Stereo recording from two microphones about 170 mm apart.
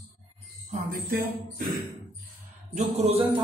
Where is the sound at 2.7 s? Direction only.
40° right (ahead or behind).